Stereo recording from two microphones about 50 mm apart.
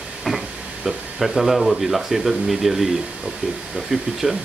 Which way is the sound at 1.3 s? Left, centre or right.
Centre.